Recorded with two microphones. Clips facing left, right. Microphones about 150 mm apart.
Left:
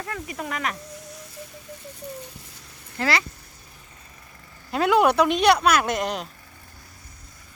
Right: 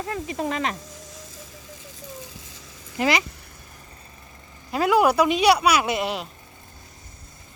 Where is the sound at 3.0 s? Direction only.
15° right (ahead or behind).